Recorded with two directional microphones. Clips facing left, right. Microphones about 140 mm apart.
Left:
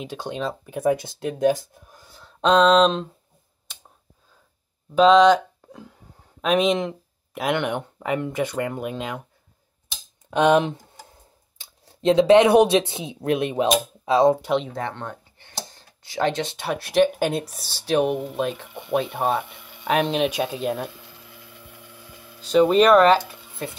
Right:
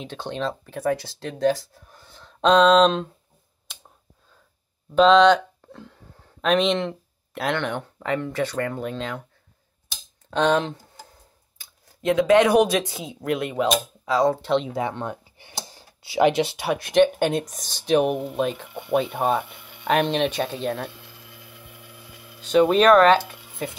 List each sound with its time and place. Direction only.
0.0 s speech: 10° left (ahead or behind)
2.0 s a sound: 5° left (ahead or behind)
4.9 s speech: 5° left (ahead or behind)
10.3 s speech: 15° left (ahead or behind)
11.9 s speech: 25° left (ahead or behind)
14.6 s speech: 5° right (ahead or behind)
22.5 s speech: centre (ahead or behind)
23.1 s a sound: 5° right (ahead or behind)